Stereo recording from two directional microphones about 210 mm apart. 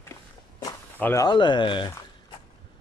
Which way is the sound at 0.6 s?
15° left (ahead or behind).